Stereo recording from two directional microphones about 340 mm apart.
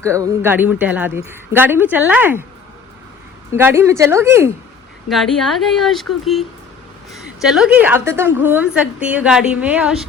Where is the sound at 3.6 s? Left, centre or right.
Centre.